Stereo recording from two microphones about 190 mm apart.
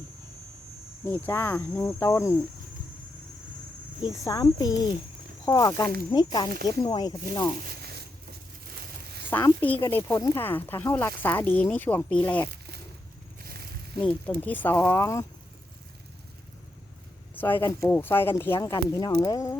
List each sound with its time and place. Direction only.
1.2 s speech: 10° left (ahead or behind)
4.0 s speech: 20° left (ahead or behind)
7.8 s a sound: 60° right (ahead or behind)
9.3 s speech: 10° left (ahead or behind)
13.4 s a sound: 55° right (ahead or behind)
14.0 s speech: 5° left (ahead or behind)
17.3 s speech: 10° left (ahead or behind)